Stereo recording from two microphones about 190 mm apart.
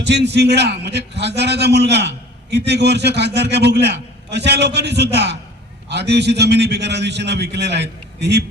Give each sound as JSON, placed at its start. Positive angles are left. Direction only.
{"t": 0.0, "sound": "a man's voice", "side_deg": -65}